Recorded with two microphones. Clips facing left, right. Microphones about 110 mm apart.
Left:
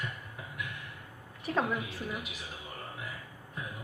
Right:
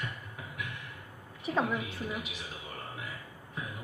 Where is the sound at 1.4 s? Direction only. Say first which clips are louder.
Right 1 dB; centre (ahead or behind).